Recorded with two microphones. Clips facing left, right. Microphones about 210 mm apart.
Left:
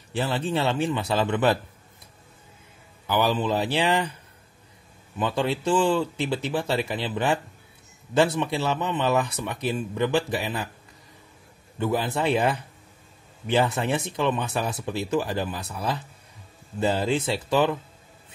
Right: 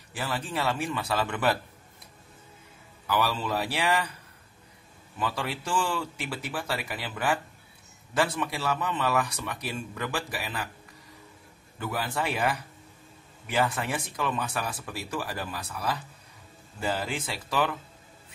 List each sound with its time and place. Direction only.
0.1 s speech: 25° left (ahead or behind)
3.1 s speech: 20° left (ahead or behind)
5.2 s speech: 25° left (ahead or behind)
11.8 s speech: 25° left (ahead or behind)